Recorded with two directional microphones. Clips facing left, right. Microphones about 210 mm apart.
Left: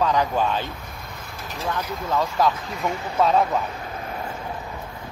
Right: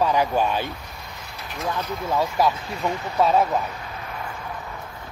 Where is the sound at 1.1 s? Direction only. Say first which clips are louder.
Left 1 dB; 50° left (ahead or behind).